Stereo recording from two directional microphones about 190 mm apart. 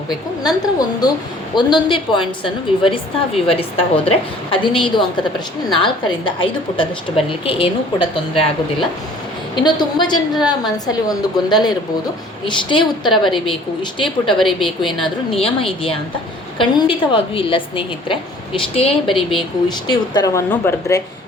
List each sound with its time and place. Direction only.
0.1 s a woman's voice: 20° left (ahead or behind)
9.6 s a woman's voice: 25° left (ahead or behind)
14.9 s a woman's voice: centre (ahead or behind)
15.4 s a woman's voice: 30° left (ahead or behind); by 21.0 s 15° left (ahead or behind)